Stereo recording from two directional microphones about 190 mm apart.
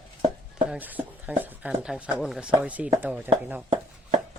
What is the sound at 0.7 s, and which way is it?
Speech, 10° right (ahead or behind).